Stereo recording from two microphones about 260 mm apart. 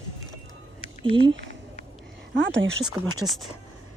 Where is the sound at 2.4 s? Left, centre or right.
Right.